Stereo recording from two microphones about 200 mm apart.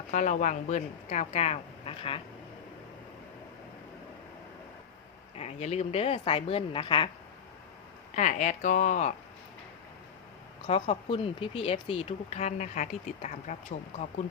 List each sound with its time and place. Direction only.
0.1 s speech: 40° left (ahead or behind)
5.4 s speech: 30° left (ahead or behind)
8.1 s speech: 35° left (ahead or behind)
10.7 s speech: 25° left (ahead or behind)